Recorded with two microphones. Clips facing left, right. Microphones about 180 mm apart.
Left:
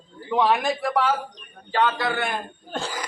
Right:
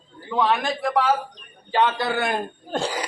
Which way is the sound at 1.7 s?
20° right (ahead or behind).